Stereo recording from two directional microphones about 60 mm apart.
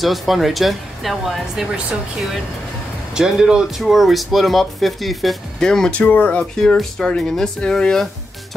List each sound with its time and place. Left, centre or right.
0.0 s speech: centre
3.2 s speech: centre
3.8 s speech: centre
5.6 s speech: centre
5.9 s speech: left
6.5 s speech: centre